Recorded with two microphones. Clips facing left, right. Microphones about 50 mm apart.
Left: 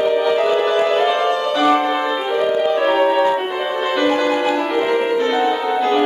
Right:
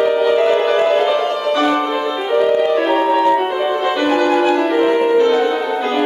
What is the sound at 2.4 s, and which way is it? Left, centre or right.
Music, centre.